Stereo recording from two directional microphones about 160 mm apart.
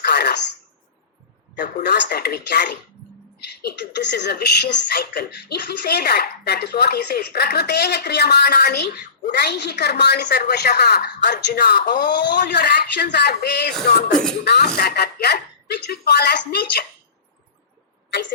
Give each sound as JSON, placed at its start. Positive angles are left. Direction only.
{"t": 0.0, "sound": "throat clearing", "side_deg": 90}
{"t": 1.8, "sound": "speech", "side_deg": 90}
{"t": 14.1, "sound": "speech", "side_deg": 5}
{"t": 14.4, "sound": "speech", "side_deg": 80}